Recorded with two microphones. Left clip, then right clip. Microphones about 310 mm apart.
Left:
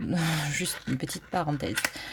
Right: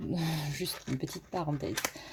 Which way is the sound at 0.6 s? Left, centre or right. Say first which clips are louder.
Left 5 dB; left.